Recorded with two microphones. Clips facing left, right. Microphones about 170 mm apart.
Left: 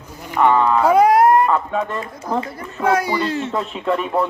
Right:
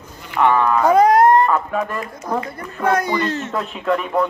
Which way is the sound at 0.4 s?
5° left (ahead or behind).